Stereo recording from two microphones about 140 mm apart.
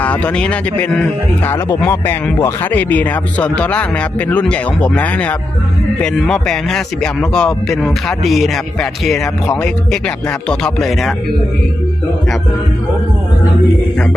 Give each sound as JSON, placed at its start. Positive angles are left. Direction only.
{"t": 0.0, "sound": "speech", "side_deg": 10}
{"t": 1.5, "sound": "speech", "side_deg": 20}